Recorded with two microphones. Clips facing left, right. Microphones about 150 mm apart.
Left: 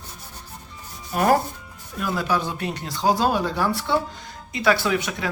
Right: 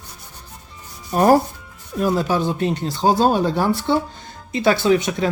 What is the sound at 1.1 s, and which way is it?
Speech, 35° right (ahead or behind).